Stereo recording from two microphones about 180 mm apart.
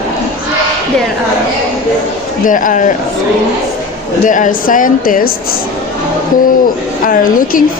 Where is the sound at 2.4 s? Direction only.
45° left (ahead or behind).